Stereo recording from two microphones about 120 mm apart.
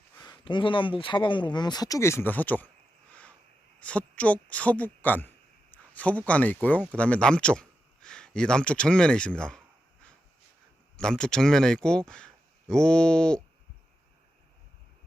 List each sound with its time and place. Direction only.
0.2 s speech: 40° left (ahead or behind); by 2.6 s 15° left (ahead or behind)
3.1 s a sound: 10° left (ahead or behind)
3.8 s speech: 10° left (ahead or behind)